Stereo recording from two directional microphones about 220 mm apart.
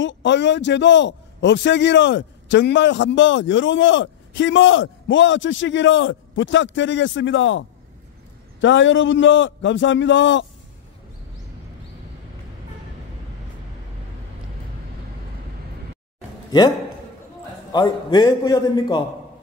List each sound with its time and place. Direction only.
0.0 s a man's voice: 55° left (ahead or behind)
17.7 s a man's voice: 20° left (ahead or behind)